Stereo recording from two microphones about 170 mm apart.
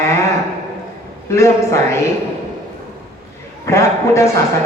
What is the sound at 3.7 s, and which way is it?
Speech, 15° left (ahead or behind).